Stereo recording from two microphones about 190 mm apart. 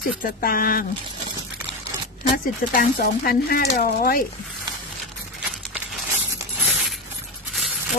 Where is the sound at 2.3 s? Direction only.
45° left (ahead or behind).